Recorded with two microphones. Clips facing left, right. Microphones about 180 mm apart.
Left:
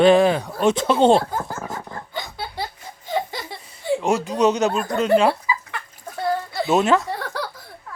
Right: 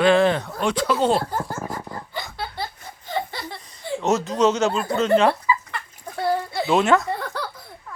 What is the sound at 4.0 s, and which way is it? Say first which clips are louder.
Speech: right 1 dB; 10° left (ahead or behind).